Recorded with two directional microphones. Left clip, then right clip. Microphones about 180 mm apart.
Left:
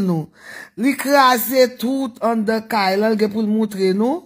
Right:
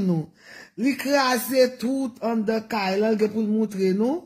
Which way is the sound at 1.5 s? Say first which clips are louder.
Left 5 dB; 10° left (ahead or behind).